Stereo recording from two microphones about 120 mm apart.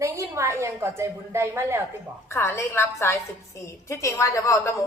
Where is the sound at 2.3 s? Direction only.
20° left (ahead or behind).